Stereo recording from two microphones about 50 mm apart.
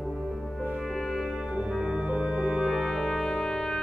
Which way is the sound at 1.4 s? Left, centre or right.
Centre.